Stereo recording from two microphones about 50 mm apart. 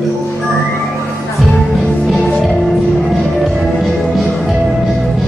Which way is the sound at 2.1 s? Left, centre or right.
Centre.